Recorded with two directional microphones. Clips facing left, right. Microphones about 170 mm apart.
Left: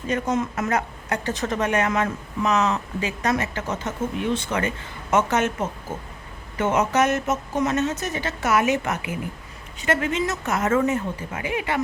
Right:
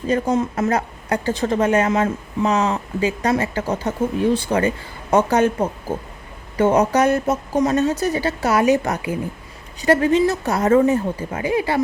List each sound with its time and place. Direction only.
0.1 s a woman's voice: 30° right (ahead or behind)